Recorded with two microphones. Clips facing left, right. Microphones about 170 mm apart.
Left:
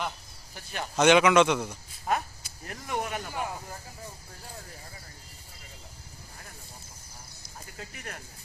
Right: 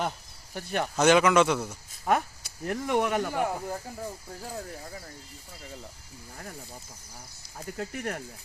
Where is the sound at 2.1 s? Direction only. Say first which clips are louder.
Right 4 dB; 60° right (ahead or behind).